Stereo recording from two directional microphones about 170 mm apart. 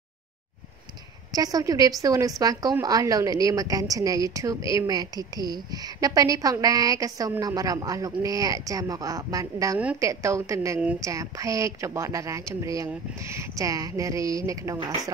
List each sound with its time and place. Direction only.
1.3 s a woman's voice: 20° right (ahead or behind)